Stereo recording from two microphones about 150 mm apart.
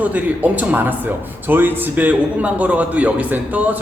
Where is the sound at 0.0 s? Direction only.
10° right (ahead or behind).